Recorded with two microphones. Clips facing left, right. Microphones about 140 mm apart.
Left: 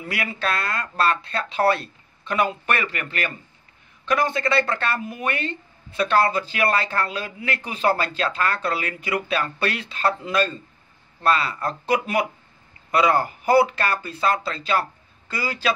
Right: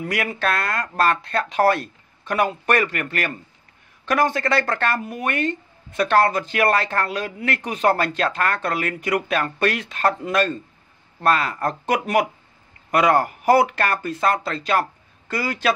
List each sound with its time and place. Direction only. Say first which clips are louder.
0.0 s speech: right 4 dB; 50° right (ahead or behind)
12.9 s speech: right 2 dB; 55° right (ahead or behind)